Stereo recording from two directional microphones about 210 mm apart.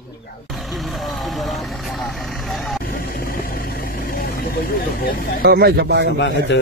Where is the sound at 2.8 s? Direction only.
45° left (ahead or behind).